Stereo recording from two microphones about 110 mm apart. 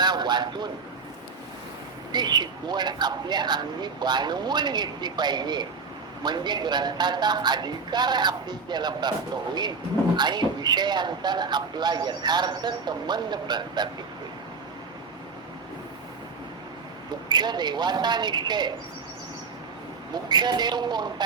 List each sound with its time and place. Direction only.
0.0 s a sound: 40° right (ahead or behind)
2.1 s a man's voice: 40° right (ahead or behind)
10.2 s a man's voice: 40° right (ahead or behind)
17.2 s a man's voice: 40° right (ahead or behind)
20.3 s a man's voice: 40° right (ahead or behind)